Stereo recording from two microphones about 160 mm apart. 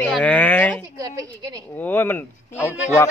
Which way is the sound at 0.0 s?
5° left (ahead or behind).